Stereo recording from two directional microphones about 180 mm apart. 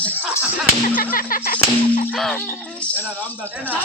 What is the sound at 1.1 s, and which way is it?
Whip, 50° left (ahead or behind).